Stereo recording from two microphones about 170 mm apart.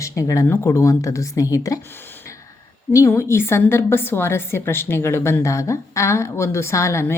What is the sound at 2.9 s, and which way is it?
A woman's voice, 15° left (ahead or behind).